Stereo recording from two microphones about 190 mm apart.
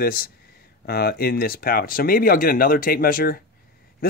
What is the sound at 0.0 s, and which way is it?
Speech, 50° left (ahead or behind).